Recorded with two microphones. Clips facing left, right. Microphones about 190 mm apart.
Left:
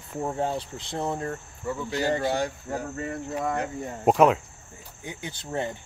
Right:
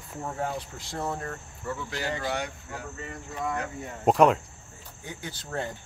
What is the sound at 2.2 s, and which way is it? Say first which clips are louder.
Speech: left 5 dB; 35° left (ahead or behind).